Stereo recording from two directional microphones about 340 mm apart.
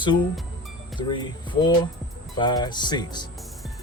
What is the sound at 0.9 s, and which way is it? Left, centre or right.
Speech, centre.